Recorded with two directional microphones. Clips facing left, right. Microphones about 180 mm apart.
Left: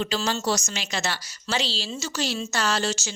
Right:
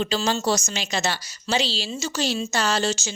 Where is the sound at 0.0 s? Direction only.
20° right (ahead or behind).